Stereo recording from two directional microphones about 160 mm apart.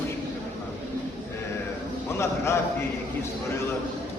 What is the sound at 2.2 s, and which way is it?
Speech, 15° left (ahead or behind).